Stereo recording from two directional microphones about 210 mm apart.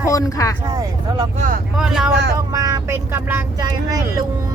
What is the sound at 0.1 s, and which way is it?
Speech, 15° left (ahead or behind).